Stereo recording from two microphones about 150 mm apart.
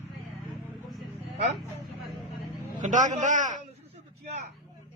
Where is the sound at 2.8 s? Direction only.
55° right (ahead or behind).